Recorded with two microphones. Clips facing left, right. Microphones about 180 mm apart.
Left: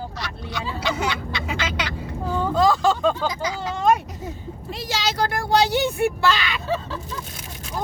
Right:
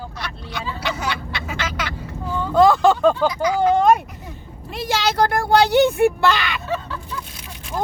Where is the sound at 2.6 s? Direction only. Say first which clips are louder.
Right 6 dB; 60° right (ahead or behind).